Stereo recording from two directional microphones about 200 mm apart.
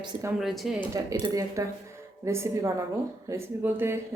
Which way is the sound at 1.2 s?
15° right (ahead or behind).